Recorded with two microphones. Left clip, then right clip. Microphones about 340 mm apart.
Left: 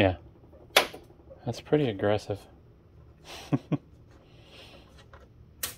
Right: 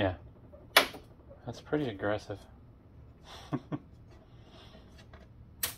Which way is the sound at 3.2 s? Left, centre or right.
Left.